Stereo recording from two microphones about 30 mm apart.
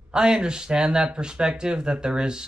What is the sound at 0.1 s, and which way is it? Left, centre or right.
Speech, right.